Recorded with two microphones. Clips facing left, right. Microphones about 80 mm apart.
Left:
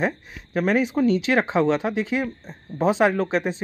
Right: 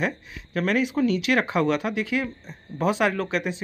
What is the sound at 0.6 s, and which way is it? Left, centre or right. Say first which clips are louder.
Speech: left 2 dB; left.